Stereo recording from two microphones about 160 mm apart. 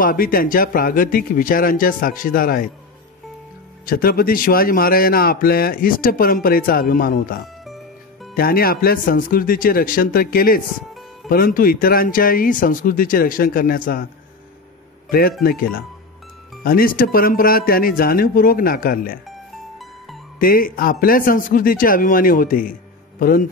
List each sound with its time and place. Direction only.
0.0 s speech: 65° left (ahead or behind)
3.8 s speech: 65° left (ahead or behind)
7.6 s music: centre (ahead or behind)
8.4 s speech: 70° left (ahead or behind)
15.0 s speech: 65° left (ahead or behind)
20.3 s speech: 65° left (ahead or behind)